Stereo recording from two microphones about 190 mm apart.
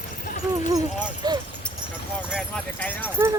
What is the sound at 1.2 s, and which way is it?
Speech, 20° right (ahead or behind).